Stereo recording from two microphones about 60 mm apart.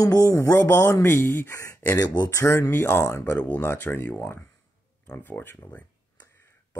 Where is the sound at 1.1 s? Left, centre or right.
Left.